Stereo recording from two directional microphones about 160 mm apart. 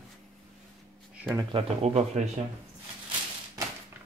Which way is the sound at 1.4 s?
35° right (ahead or behind).